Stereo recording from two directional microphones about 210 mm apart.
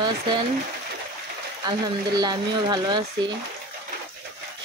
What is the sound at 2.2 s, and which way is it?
Speech, 20° right (ahead or behind).